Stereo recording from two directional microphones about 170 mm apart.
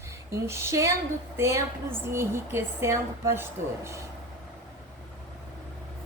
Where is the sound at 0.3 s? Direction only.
15° right (ahead or behind).